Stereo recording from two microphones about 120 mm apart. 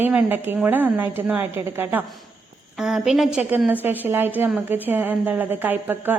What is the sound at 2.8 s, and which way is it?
A woman's voice, 5° right (ahead or behind).